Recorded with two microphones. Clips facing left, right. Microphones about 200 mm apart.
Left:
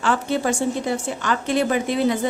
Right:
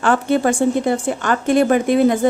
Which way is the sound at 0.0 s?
55° right (ahead or behind).